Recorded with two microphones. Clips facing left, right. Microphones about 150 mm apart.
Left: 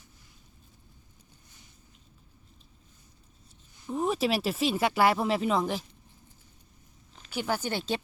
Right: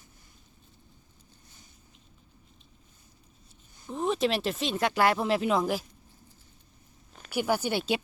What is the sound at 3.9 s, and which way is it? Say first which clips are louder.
Speech: even; 5° left (ahead or behind).